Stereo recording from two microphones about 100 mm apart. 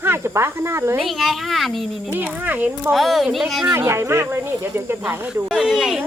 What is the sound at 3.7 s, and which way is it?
Speech, 25° right (ahead or behind).